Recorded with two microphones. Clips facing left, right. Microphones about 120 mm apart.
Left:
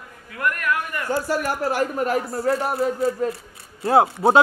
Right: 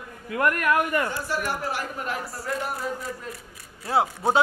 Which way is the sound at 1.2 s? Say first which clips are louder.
Left 5 dB; 45° left (ahead or behind).